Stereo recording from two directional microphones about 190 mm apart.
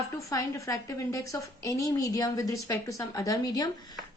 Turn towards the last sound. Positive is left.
turn(degrees=20)  # may be behind; listen again after turning